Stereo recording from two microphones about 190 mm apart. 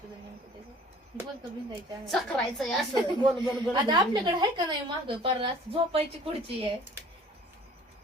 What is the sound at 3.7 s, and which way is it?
A woman's voice, 25° right (ahead or behind).